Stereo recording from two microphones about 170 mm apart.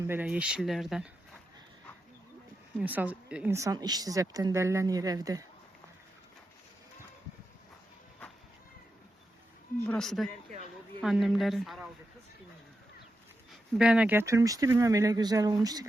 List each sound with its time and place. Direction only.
0.0 s speech: 10° right (ahead or behind)
2.7 s speech: 10° right (ahead or behind)
9.8 s speech: 5° left (ahead or behind)
13.5 s speech: 5° right (ahead or behind); by 15.9 s 20° right (ahead or behind)